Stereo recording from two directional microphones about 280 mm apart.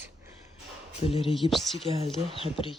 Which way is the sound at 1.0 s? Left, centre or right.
Centre.